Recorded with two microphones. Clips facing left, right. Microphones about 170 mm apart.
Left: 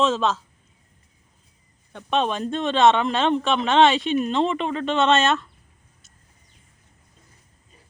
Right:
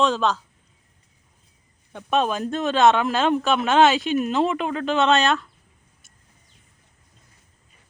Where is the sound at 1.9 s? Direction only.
5° right (ahead or behind).